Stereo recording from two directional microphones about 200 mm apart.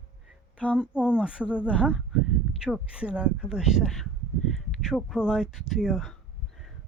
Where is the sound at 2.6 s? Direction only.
5° right (ahead or behind).